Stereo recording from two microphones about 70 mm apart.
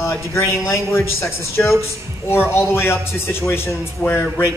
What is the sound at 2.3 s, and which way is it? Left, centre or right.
A man's voice, left.